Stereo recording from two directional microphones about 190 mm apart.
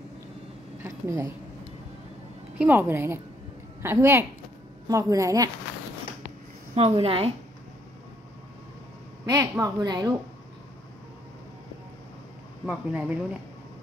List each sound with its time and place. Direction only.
0.8 s speech: 15° right (ahead or behind)
2.6 s speech: 10° right (ahead or behind)
6.7 s a woman's voice: 30° right (ahead or behind)
9.2 s a woman's voice: 20° right (ahead or behind)
12.6 s speech: 5° right (ahead or behind)